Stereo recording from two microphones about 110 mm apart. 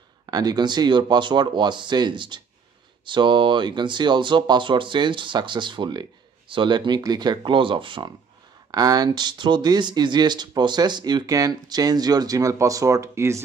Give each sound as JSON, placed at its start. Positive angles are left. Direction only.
{"t": 0.3, "sound": "speech", "side_deg": -35}
{"t": 8.7, "sound": "speech", "side_deg": -35}